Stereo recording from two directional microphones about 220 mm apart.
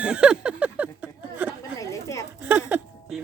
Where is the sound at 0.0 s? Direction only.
5° right (ahead or behind).